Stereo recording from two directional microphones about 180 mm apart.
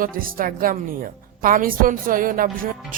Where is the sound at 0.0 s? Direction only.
50° right (ahead or behind).